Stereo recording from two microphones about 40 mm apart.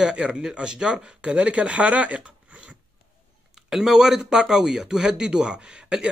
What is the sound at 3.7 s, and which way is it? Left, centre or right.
Speech, centre.